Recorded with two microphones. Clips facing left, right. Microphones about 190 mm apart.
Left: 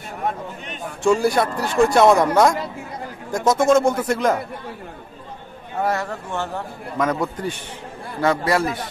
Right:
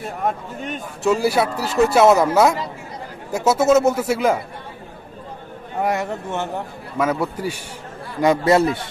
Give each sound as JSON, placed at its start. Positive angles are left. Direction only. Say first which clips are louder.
{"t": 0.2, "sound": "speech", "louder": "right 1 dB", "side_deg": -45}
{"t": 1.0, "sound": "speech", "louder": "even", "side_deg": -5}
{"t": 5.8, "sound": "speech", "louder": "right 1 dB", "side_deg": -20}
{"t": 7.0, "sound": "speech", "louder": "right 1 dB", "side_deg": -10}
{"t": 8.2, "sound": "speech", "louder": "right 4 dB", "side_deg": -20}